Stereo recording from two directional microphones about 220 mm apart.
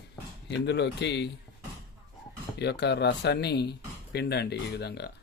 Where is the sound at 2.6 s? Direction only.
50° left (ahead or behind).